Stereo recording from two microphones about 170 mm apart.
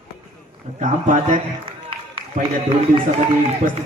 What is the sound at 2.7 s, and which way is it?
Speech, 30° right (ahead or behind).